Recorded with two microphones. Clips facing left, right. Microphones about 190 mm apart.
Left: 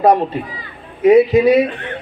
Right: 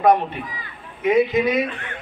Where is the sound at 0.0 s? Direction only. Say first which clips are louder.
Left 4 dB; 35° left (ahead or behind).